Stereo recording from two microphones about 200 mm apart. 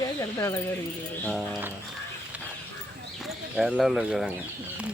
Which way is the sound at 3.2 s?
Centre (ahead or behind).